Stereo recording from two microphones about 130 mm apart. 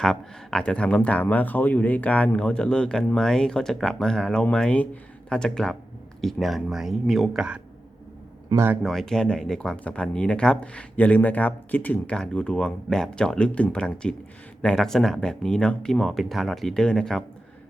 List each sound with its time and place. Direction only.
0.0 s speech: 5° left (ahead or behind)
8.4 s speech: 25° right (ahead or behind)
8.8 s speech: 5° left (ahead or behind)